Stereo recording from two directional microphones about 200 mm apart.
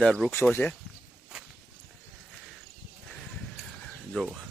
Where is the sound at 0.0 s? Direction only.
5° left (ahead or behind).